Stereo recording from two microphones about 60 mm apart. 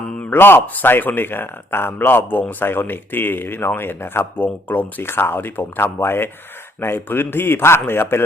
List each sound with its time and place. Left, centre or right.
0.2 s speech: left